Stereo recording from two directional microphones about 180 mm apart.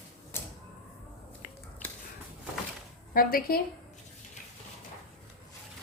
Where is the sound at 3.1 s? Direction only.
55° left (ahead or behind).